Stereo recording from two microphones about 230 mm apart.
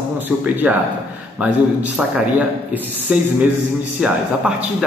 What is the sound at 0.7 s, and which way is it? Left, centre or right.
A man's voice, centre.